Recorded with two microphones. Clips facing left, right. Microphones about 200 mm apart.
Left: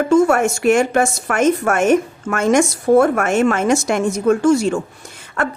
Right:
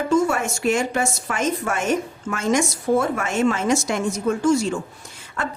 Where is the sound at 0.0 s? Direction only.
55° left (ahead or behind).